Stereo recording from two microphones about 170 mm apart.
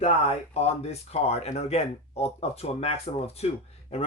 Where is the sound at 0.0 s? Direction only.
40° left (ahead or behind).